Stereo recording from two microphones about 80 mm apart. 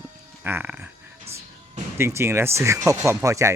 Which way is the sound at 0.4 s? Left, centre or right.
Right.